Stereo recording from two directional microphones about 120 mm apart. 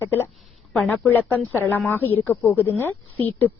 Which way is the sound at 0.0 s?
20° left (ahead or behind).